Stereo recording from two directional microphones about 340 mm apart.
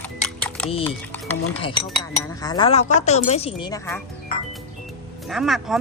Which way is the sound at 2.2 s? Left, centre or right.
Centre.